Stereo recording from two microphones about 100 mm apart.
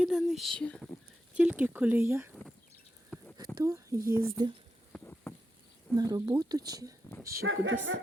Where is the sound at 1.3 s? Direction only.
15° right (ahead or behind).